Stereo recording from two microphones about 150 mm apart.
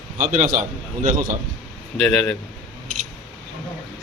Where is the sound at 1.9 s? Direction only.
5° left (ahead or behind).